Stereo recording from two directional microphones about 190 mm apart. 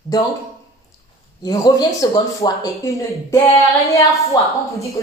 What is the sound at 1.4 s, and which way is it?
A woman's voice, 20° left (ahead or behind).